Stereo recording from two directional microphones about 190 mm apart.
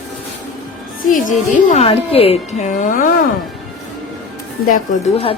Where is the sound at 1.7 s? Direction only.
30° left (ahead or behind).